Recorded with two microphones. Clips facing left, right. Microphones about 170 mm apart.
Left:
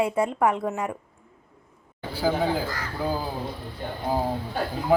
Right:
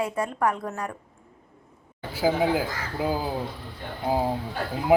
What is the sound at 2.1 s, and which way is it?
A man's voice, 10° right (ahead or behind).